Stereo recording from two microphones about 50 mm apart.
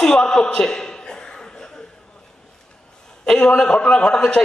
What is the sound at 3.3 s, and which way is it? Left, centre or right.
Speech, centre.